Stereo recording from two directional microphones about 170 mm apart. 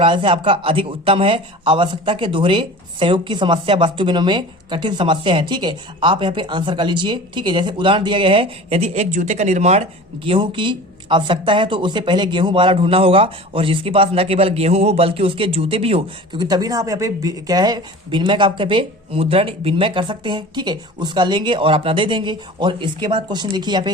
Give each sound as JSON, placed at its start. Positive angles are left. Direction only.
{"t": 0.0, "sound": "speech", "side_deg": -30}